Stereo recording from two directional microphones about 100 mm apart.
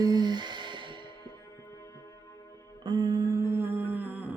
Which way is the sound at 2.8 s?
45° right (ahead or behind).